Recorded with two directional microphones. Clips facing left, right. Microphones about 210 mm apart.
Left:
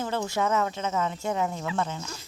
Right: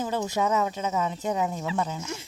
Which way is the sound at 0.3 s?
15° right (ahead or behind).